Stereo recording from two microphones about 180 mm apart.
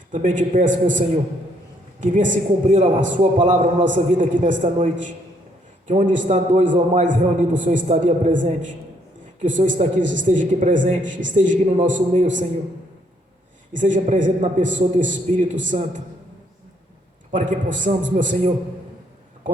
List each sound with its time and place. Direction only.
0.1 s a man's voice: 45° right (ahead or behind)
13.7 s a man's voice: 45° right (ahead or behind)
17.3 s a man's voice: 45° right (ahead or behind)